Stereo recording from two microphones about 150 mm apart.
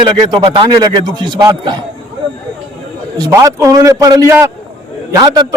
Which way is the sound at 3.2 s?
20° right (ahead or behind).